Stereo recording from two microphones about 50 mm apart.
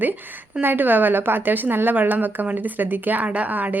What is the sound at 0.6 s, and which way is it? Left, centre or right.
A woman's voice, right.